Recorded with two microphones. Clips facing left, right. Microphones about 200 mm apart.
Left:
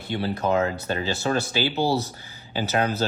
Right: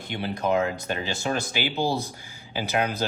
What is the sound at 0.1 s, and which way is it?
Speech, 15° right (ahead or behind).